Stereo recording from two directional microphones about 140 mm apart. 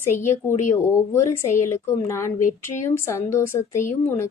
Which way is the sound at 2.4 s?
65° left (ahead or behind).